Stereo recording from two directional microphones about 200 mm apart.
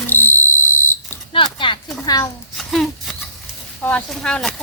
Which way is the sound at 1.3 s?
25° left (ahead or behind).